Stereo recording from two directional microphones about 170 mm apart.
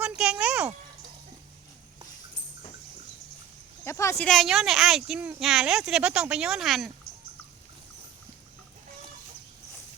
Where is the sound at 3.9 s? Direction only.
15° left (ahead or behind).